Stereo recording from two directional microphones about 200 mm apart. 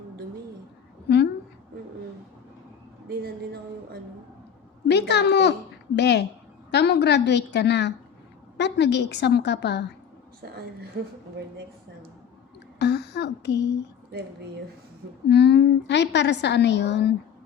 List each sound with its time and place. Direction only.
3.1 s speech: 50° right (ahead or behind)
4.9 s a woman's voice: 55° left (ahead or behind)
11.0 s a woman's voice: 60° right (ahead or behind)
12.8 s speech: 55° left (ahead or behind)
15.3 s a woman's voice: 60° left (ahead or behind)